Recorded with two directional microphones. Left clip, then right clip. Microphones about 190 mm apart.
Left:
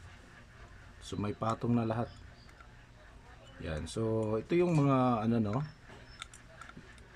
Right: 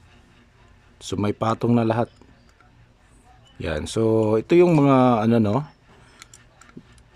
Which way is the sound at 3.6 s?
55° right (ahead or behind).